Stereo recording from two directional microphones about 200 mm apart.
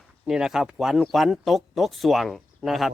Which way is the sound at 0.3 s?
5° right (ahead or behind).